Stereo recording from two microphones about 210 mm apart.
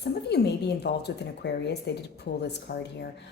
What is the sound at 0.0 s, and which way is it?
Speech, 50° left (ahead or behind).